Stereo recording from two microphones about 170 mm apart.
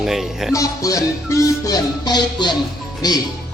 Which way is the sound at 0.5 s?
20° left (ahead or behind).